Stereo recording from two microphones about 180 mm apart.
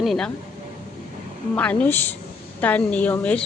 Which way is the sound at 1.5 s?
5° left (ahead or behind).